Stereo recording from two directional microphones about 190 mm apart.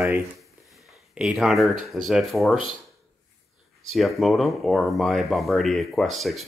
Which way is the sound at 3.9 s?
Centre (ahead or behind).